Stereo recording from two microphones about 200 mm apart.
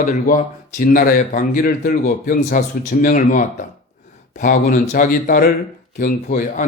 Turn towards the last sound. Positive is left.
turn(degrees=40)  # may be behind; listen again after turning